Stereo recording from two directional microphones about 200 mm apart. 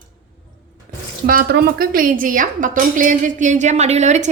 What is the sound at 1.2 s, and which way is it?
A woman's voice, 50° right (ahead or behind).